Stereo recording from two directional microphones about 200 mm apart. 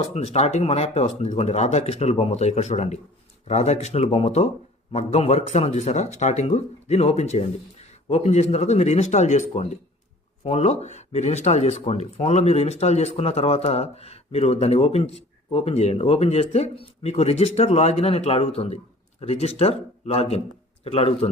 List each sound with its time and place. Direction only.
0.1 s speech: 35° left (ahead or behind)